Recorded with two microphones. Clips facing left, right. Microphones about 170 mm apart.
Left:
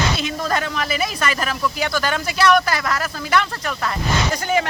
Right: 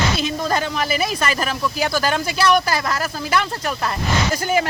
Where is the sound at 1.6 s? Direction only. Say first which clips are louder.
Right 1 dB; 35° right (ahead or behind).